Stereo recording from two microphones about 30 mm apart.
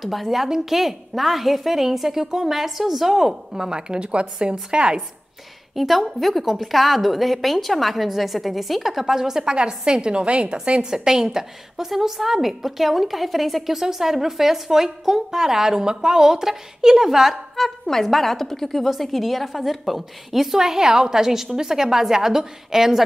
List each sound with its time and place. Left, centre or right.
0.0 s a woman's voice: centre
3.7 s a woman's voice: right
5.8 s a woman's voice: centre
9.0 s a woman's voice: centre
9.6 s a woman's voice: right
10.9 s a woman's voice: centre
13.7 s a woman's voice: centre
17.6 s a woman's voice: centre
20.5 s a woman's voice: centre